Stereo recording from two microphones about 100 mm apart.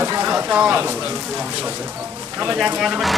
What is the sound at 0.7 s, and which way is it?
Speech, 25° right (ahead or behind).